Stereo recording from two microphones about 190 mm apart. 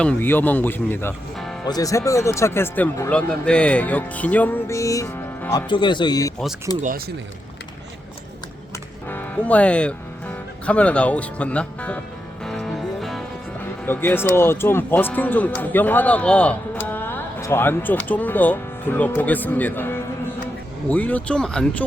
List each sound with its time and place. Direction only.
0.0 s speech: 10° left (ahead or behind)
9.0 s speech: 10° left (ahead or behind)
12.4 s music: centre (ahead or behind)
13.8 s speech: 10° left (ahead or behind)